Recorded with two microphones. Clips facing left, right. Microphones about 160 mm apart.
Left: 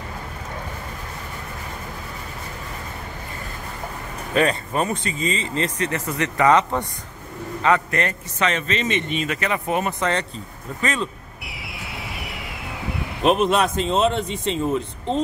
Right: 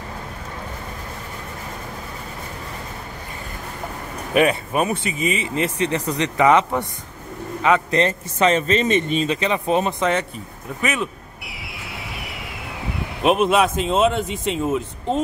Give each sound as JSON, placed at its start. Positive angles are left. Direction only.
{"t": 4.3, "sound": "speech", "side_deg": -15}
{"t": 8.0, "sound": "speech", "side_deg": -35}
{"t": 9.3, "sound": "speech", "side_deg": -20}
{"t": 11.4, "sound": "a sound", "side_deg": 0}